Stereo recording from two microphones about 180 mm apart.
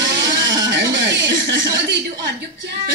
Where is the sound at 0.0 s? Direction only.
85° right.